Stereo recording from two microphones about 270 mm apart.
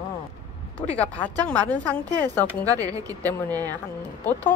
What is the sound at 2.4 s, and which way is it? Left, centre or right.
Speech, centre.